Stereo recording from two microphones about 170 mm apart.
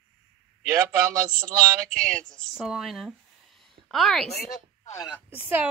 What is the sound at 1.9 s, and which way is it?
Speech, 55° right (ahead or behind).